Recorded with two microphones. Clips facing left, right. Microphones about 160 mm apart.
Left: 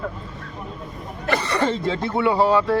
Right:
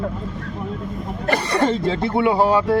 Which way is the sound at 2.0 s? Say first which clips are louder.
Right 1 dB; 15° right (ahead or behind).